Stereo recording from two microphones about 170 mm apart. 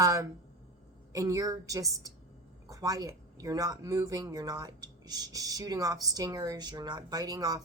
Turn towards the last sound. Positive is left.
turn(degrees=-20)  # may be behind; listen again after turning